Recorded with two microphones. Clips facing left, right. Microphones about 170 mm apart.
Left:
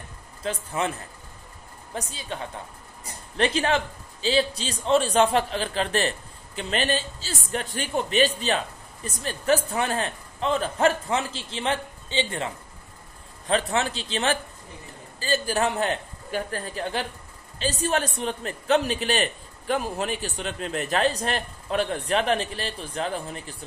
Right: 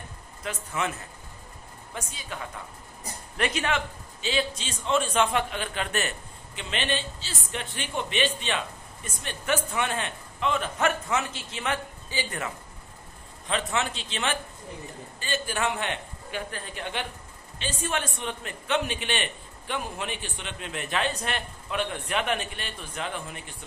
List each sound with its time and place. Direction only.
0.4 s a man's voice: 30° left (ahead or behind)
2.0 s a man's voice: 30° left (ahead or behind)